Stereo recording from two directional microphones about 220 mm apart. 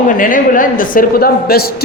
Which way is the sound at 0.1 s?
40° left (ahead or behind).